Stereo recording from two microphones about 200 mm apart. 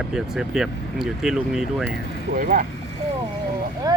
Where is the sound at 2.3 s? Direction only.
45° right (ahead or behind).